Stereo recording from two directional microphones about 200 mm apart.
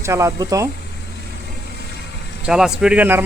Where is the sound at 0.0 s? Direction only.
15° right (ahead or behind).